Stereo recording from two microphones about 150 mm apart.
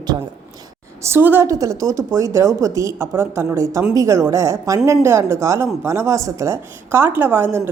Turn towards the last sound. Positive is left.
turn(degrees=-15)  # may be behind; listen again after turning